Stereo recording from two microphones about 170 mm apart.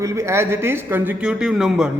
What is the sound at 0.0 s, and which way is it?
Speech, 15° right (ahead or behind).